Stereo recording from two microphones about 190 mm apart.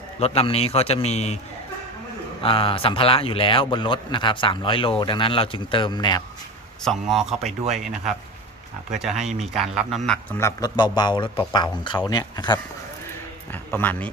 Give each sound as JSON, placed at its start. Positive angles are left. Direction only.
{"t": 0.2, "sound": "a man's voice", "side_deg": 30}
{"t": 2.4, "sound": "a man's voice", "side_deg": 30}
{"t": 6.8, "sound": "speech", "side_deg": 0}
{"t": 10.1, "sound": "a man's voice", "side_deg": 15}
{"t": 13.5, "sound": "speech", "side_deg": 10}